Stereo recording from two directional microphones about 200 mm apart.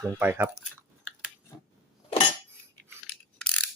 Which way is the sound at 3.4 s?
5° left (ahead or behind).